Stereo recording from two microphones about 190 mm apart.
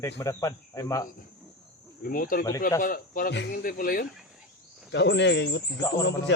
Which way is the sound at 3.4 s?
65° left (ahead or behind).